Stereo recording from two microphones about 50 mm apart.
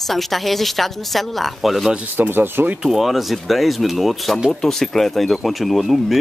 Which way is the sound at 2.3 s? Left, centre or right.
Right.